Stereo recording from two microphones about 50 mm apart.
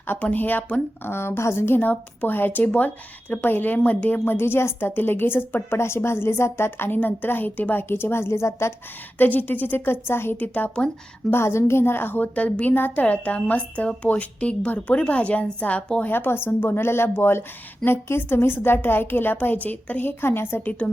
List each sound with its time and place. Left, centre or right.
0.3 s a woman's voice: left
1.1 s a woman's voice: left
1.8 s a woman's voice: left
4.3 s a woman's voice: left
5.7 s a woman's voice: left
7.9 s a woman's voice: left
9.1 s a woman's voice: left
10.3 s a woman's voice: left
11.3 s a woman's voice: left
12.7 s a woman's voice: left
13.1 s a woman's voice: left
16.0 s a woman's voice: left
20.1 s a woman's voice: left
20.8 s a woman's voice: left